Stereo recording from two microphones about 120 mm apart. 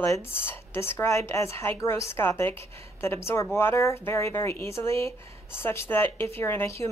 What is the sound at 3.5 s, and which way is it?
A woman's voice, 20° left (ahead or behind).